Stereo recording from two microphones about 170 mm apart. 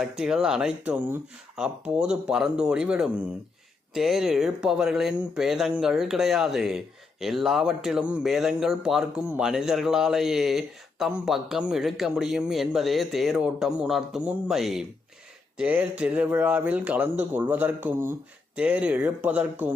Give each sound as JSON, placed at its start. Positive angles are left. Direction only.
{"t": 0.2, "sound": "speech", "side_deg": -5}